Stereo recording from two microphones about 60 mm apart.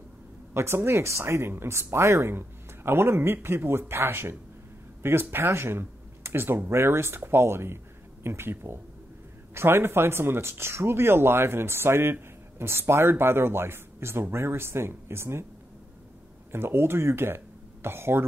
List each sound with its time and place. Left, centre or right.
0.6 s speech: right
16.5 s speech: right